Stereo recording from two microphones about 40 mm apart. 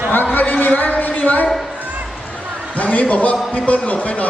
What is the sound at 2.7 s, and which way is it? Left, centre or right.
A man's voice, left.